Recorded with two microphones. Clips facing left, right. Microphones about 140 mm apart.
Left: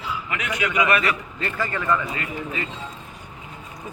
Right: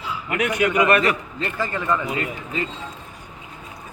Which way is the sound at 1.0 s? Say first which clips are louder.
Right 3 dB; 25° right (ahead or behind).